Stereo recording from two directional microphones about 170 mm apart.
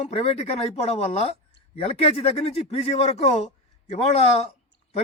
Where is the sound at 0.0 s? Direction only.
35° left (ahead or behind).